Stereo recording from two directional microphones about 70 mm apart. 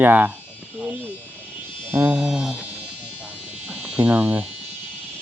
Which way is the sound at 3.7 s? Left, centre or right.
Centre.